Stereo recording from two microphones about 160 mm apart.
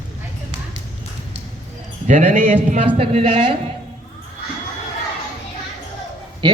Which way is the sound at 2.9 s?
40° right (ahead or behind).